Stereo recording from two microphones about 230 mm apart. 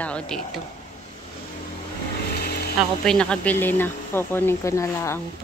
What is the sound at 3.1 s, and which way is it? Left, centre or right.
Speech, centre.